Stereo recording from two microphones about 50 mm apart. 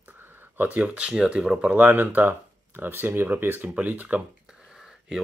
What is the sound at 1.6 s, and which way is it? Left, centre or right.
Speech, right.